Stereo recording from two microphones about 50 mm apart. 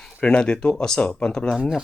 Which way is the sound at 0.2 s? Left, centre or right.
Left.